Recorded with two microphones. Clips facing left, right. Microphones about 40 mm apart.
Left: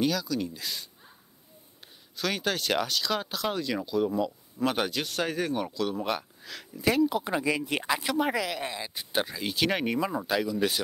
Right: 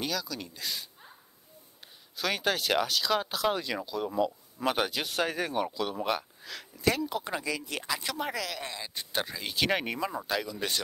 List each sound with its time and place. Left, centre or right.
0.0 s speech: centre
2.1 s speech: centre
7.4 s speech: left
8.0 s speech: centre